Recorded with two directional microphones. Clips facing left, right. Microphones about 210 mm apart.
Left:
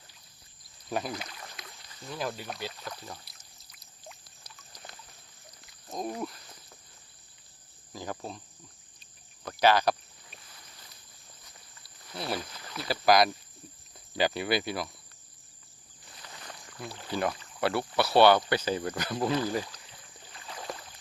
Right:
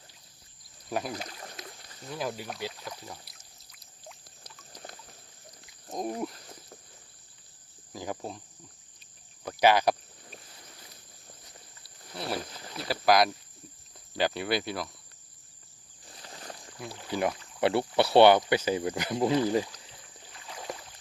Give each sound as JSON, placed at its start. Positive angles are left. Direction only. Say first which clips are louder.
{"t": 0.9, "sound": "speech", "louder": "even", "side_deg": -5}
{"t": 1.1, "sound": "rowboat", "louder": "right 1 dB", "side_deg": -35}
{"t": 2.1, "sound": "speech", "louder": "right 1 dB", "side_deg": -10}
{"t": 4.7, "sound": "boat", "louder": "right 4 dB", "side_deg": -45}
{"t": 5.9, "sound": "speech", "louder": "right 2 dB", "side_deg": -20}
{"t": 7.9, "sound": "speech", "louder": "right 2 dB", "side_deg": -15}
{"t": 9.4, "sound": "cricket", "louder": "right 1 dB", "side_deg": -10}
{"t": 12.9, "sound": "speech", "louder": "even", "side_deg": 0}
{"t": 16.0, "sound": "a sound", "louder": "right 3 dB", "side_deg": -35}
{"t": 16.7, "sound": "speech", "louder": "right 1 dB", "side_deg": -10}
{"t": 20.3, "sound": "rowboat", "louder": "even", "side_deg": -10}